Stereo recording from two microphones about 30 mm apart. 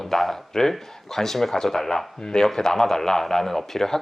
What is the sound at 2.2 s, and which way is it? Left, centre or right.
Speech, left.